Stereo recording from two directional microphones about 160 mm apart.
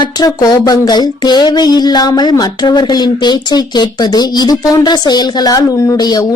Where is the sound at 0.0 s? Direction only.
25° left (ahead or behind).